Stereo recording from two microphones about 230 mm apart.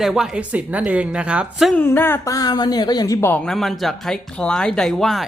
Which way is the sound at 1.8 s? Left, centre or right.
Centre.